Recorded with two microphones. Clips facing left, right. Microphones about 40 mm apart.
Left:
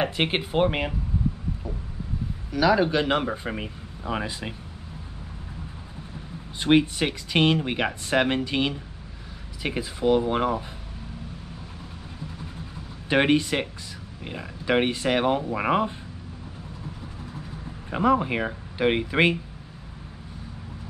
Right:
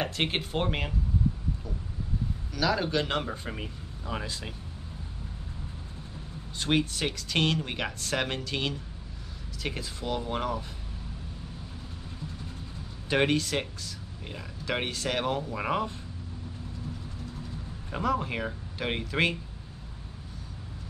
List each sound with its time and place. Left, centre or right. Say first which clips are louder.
0.0 s speech: left 5 dB; centre
2.5 s speech: left 7 dB; centre
6.6 s speech: left 7 dB; left
13.1 s speech: left 5 dB; left
17.8 s speech: left 7 dB; left